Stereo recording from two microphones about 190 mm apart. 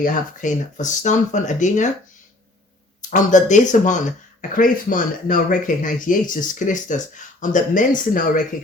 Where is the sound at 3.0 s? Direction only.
40° left (ahead or behind).